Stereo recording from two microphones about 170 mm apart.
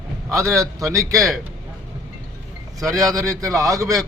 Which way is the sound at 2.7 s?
20° right (ahead or behind).